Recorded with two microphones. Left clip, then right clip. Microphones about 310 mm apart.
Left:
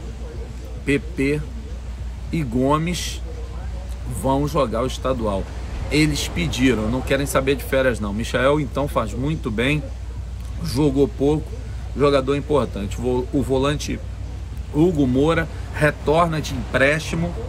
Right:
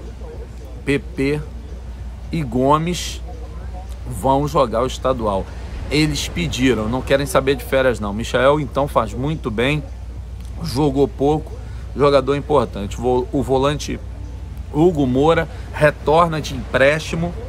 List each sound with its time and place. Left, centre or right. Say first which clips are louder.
0.8 s speech: right 1 dB; centre
4.2 s speech: right 4 dB; centre